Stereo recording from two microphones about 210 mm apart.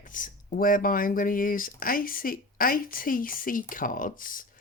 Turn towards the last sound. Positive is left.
turn(degrees=40)  # may be behind; listen again after turning